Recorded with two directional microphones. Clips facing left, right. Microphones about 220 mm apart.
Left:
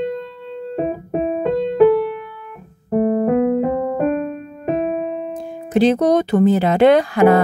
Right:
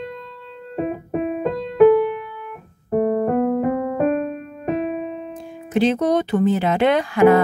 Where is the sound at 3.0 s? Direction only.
20° left (ahead or behind).